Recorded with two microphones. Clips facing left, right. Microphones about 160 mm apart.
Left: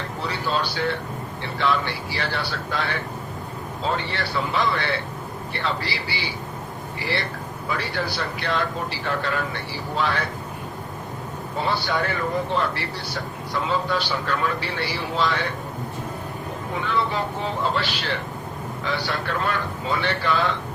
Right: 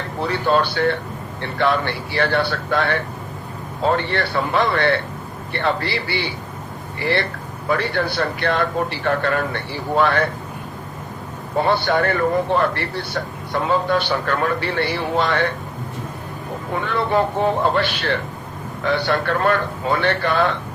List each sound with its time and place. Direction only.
0.2 s a man's voice: 55° right (ahead or behind)
11.5 s a man's voice: 55° right (ahead or behind)
16.7 s a man's voice: 55° right (ahead or behind)